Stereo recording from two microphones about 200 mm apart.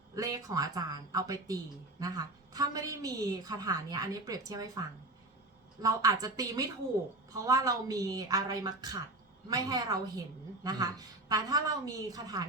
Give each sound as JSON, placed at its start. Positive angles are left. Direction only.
{"t": 0.2, "sound": "a woman's voice", "side_deg": -15}